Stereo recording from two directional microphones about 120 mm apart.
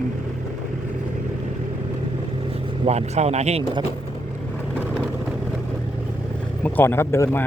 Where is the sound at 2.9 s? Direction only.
65° right (ahead or behind).